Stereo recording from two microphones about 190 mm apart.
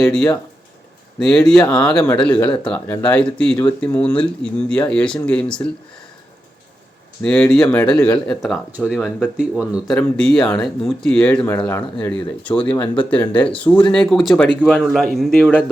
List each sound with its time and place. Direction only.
0.0 s speech: 5° left (ahead or behind)
7.2 s speech: 5° left (ahead or behind)
11.4 s speech: 15° left (ahead or behind)
12.1 s speech: 5° left (ahead or behind)
12.7 s speech: 25° left (ahead or behind)
13.0 s speech: 5° left (ahead or behind)